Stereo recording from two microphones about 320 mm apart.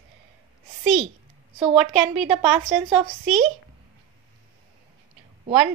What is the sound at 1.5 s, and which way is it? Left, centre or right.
A woman's voice, centre.